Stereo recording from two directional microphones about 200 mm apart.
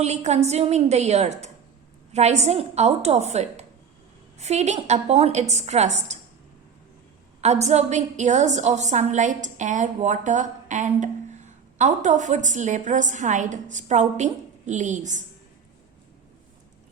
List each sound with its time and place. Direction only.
0.0 s a woman's voice: 35° right (ahead or behind)
7.4 s a woman's voice: 35° right (ahead or behind)